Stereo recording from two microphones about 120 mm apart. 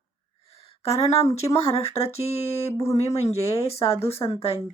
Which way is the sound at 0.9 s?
60° left (ahead or behind).